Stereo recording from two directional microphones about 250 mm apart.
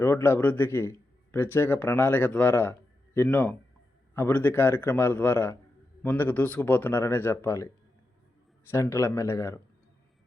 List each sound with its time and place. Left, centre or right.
0.0 s a man's voice: centre
8.7 s a man's voice: centre